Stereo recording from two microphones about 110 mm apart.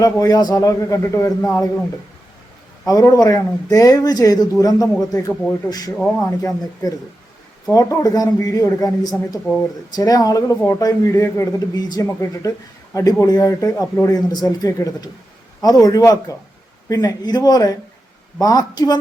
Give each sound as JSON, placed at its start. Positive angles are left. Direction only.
{"t": 0.0, "sound": "a man's voice", "side_deg": 35}
{"t": 2.8, "sound": "speech", "side_deg": 35}